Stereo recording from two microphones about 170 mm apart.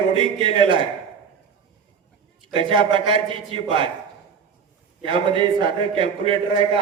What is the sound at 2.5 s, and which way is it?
A man's voice, 30° right (ahead or behind).